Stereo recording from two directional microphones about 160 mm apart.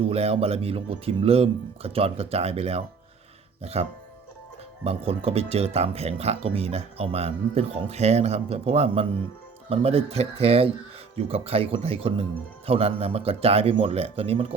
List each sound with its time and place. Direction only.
0.0 s speech: 40° right (ahead or behind)